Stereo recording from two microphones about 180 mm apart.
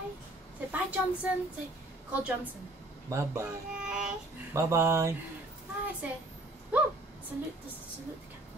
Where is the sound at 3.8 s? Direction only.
5° right (ahead or behind).